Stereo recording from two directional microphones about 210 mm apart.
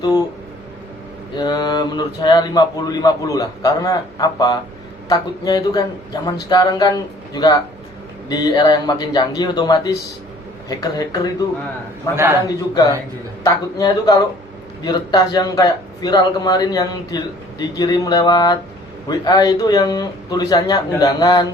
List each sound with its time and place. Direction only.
1.4 s a man's voice: 20° left (ahead or behind)
12.1 s a man's voice: 10° right (ahead or behind)
12.5 s a man's voice: 20° left (ahead or behind)